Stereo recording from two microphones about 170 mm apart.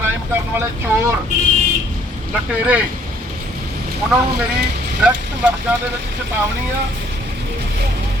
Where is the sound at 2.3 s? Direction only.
10° right (ahead or behind).